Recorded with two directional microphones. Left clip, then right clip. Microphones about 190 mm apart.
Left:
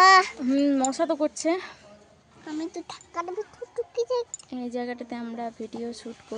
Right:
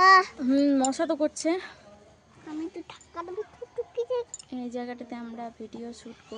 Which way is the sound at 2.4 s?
45° left (ahead or behind).